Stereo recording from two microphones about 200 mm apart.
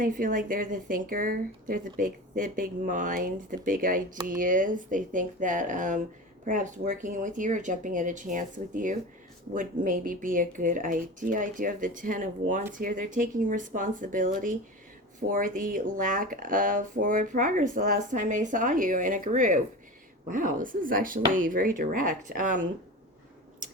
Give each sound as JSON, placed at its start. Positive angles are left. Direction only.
{"t": 0.0, "sound": "speech", "side_deg": -40}